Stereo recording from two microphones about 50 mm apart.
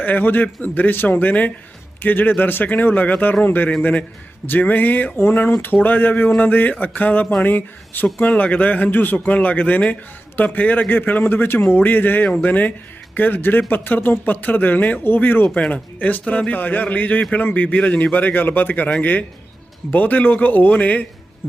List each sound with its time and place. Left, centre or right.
0.0 s speech: left
8.0 s speech: left
15.7 s speech: left
19.9 s speech: left